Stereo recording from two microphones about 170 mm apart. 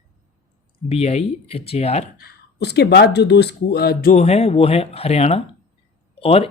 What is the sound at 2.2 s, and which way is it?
Speech, 70° left (ahead or behind).